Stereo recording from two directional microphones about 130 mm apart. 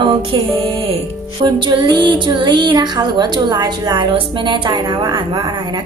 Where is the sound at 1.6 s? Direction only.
35° right (ahead or behind).